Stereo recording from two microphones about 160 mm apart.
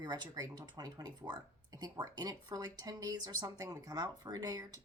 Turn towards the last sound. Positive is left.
turn(degrees=-25)  # may be behind; listen again after turning